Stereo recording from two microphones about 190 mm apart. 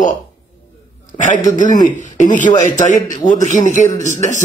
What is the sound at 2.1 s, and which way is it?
A man's voice, 40° left (ahead or behind).